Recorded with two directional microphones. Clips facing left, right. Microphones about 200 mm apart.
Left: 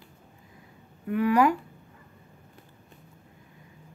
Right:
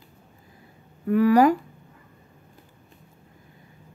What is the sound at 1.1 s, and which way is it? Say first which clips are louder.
Speech: right 5 dB; 40° right (ahead or behind).